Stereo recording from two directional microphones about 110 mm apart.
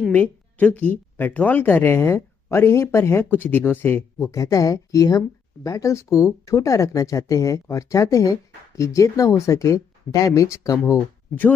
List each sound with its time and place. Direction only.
0.1 s speech: 15° left (ahead or behind)
4.3 s speech: 30° left (ahead or behind)